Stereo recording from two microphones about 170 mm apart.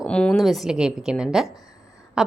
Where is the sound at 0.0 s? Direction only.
5° left (ahead or behind).